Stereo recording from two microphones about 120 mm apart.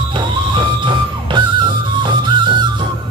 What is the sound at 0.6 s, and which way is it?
Music, 40° right (ahead or behind).